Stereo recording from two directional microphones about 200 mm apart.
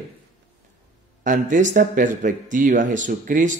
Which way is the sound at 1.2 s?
40° right (ahead or behind).